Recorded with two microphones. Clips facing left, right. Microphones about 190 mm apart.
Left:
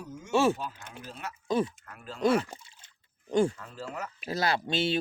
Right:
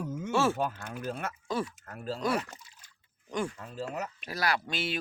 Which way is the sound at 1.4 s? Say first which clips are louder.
Left 6 dB; 20° left (ahead or behind).